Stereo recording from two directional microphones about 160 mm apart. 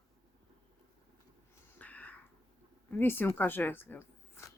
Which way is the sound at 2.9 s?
15° left (ahead or behind).